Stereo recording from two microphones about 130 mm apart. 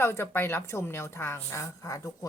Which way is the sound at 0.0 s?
20° left (ahead or behind).